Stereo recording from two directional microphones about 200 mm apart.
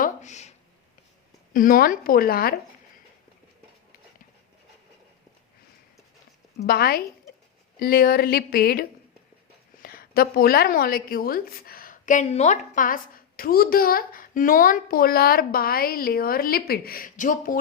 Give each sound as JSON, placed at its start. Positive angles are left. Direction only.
{"t": 0.0, "sound": "a sound", "side_deg": 35}
{"t": 1.5, "sound": "a woman's voice", "side_deg": 45}
{"t": 6.6, "sound": "a woman's voice", "side_deg": 50}